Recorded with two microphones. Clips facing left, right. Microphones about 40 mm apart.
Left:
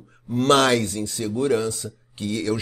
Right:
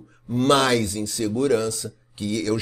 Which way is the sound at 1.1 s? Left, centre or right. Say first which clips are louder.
Right 1 dB; left.